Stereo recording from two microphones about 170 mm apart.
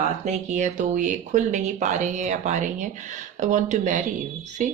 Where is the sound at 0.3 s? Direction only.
45° right (ahead or behind).